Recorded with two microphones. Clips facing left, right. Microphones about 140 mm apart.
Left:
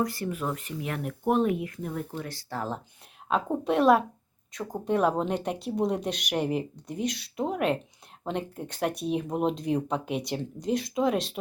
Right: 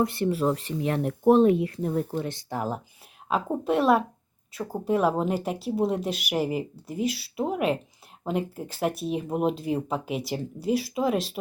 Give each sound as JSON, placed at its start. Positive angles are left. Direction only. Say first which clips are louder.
{"t": 0.0, "sound": "speech", "louder": "right 6 dB", "side_deg": -25}